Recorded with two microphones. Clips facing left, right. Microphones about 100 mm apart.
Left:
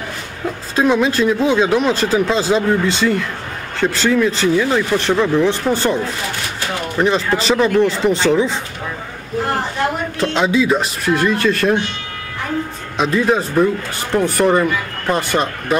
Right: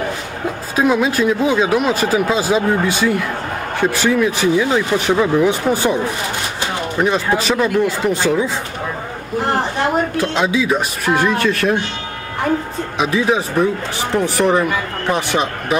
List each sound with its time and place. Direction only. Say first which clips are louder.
0.7 s speech: left 1 dB; 5° right (ahead or behind)
7.0 s speech: left 1 dB; 5° right (ahead or behind)
10.2 s speech: left 1 dB; 5° right (ahead or behind)
12.9 s speech: left 1 dB; 5° right (ahead or behind)